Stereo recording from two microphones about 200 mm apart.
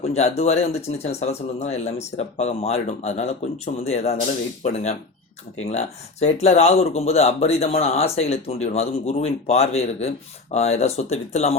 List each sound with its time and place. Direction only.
0.0 s speech: 35° left (ahead or behind)